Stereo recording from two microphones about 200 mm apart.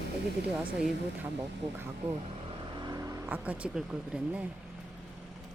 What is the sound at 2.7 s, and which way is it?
Speech, 20° right (ahead or behind).